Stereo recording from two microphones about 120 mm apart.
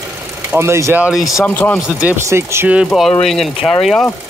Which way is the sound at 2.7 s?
Centre (ahead or behind).